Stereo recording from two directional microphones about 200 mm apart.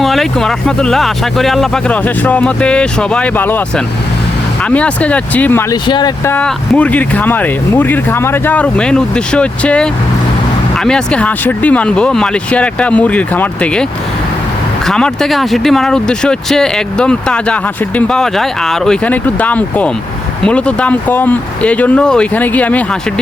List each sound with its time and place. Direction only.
0.0 s speech: centre (ahead or behind)
5.7 s speech: 20° left (ahead or behind)
6.3 s speech: 5° left (ahead or behind)
14.8 s speech: 5° left (ahead or behind)